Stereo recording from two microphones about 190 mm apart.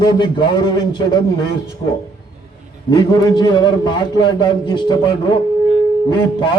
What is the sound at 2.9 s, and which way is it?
A man's voice, 25° left (ahead or behind).